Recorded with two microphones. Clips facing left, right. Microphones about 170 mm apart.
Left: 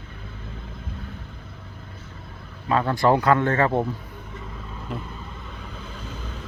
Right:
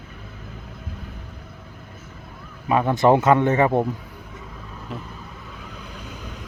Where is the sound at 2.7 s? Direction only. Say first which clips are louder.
Right 3 dB; 15° right (ahead or behind).